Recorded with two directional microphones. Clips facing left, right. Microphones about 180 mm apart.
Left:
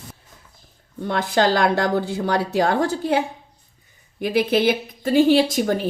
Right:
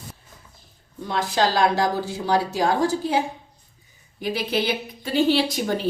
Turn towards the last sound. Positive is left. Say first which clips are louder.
# left 4 dB
turn(degrees=50)  # may be behind; listen again after turning